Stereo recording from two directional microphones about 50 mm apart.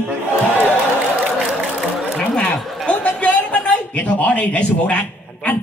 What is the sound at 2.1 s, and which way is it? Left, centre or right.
A man's voice, centre.